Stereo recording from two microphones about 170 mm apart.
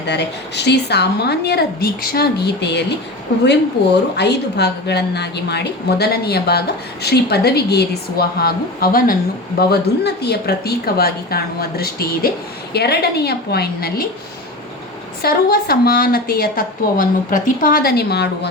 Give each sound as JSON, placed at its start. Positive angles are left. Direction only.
{"t": 0.0, "sound": "a woman's voice", "side_deg": 85}
{"t": 9.6, "sound": "a woman's voice", "side_deg": 70}
{"t": 15.2, "sound": "a woman's voice", "side_deg": 65}